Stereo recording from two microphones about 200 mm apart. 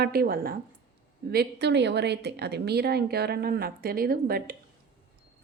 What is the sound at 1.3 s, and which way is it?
Speech, 60° right (ahead or behind).